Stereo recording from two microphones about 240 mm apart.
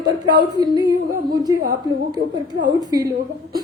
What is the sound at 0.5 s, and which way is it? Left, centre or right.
Speech, centre.